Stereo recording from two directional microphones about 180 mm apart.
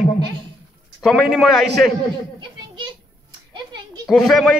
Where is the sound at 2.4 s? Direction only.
25° right (ahead or behind).